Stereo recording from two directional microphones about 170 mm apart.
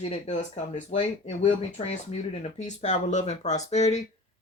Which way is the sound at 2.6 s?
45° left (ahead or behind).